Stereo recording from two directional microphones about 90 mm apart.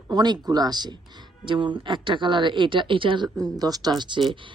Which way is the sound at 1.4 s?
65° right (ahead or behind).